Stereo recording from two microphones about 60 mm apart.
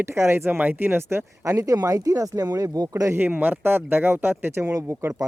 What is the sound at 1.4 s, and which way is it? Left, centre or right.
Speech, right.